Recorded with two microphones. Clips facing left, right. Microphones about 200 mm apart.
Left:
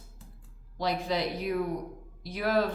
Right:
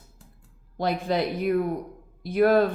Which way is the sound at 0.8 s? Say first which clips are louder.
Right 4 dB; 55° right (ahead or behind).